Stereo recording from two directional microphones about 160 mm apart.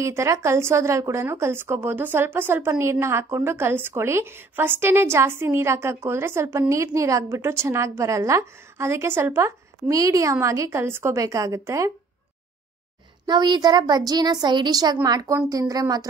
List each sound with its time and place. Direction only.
0.0 s a woman's voice: 20° right (ahead or behind)
13.3 s a woman's voice: 25° right (ahead or behind)